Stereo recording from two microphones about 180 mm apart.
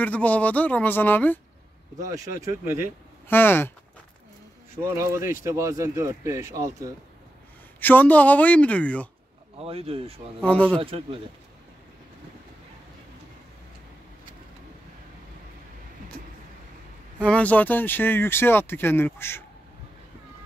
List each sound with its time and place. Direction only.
0.0 s speech: 10° left (ahead or behind)
2.0 s speech: 20° right (ahead or behind)
3.3 s speech: 10° left (ahead or behind)
4.7 s speech: 15° right (ahead or behind)
7.8 s speech: 10° left (ahead or behind)
9.6 s speech: 35° right (ahead or behind)
10.4 s speech: 5° left (ahead or behind)
10.8 s speech: 30° right (ahead or behind)
17.2 s speech: 5° left (ahead or behind)